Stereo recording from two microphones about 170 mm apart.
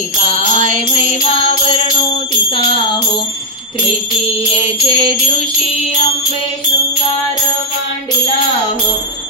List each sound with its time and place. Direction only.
0.6 s music: 50° right (ahead or behind)
4.6 s music: 35° left (ahead or behind)